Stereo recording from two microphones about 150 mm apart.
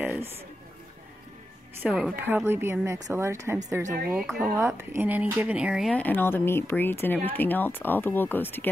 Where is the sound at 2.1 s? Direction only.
15° right (ahead or behind).